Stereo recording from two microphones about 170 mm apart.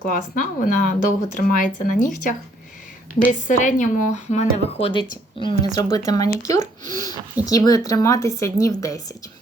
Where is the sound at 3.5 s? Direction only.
50° left (ahead or behind).